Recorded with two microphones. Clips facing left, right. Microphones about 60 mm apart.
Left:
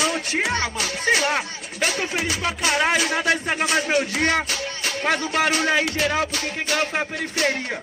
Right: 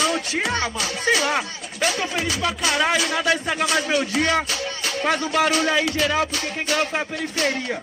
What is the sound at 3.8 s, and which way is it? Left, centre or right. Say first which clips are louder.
Music: even; left.